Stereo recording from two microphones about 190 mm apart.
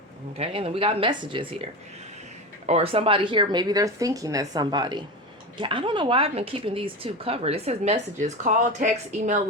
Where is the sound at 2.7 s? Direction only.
30° right (ahead or behind).